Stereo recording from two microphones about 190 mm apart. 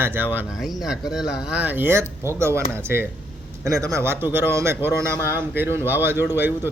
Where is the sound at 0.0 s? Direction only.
10° right (ahead or behind).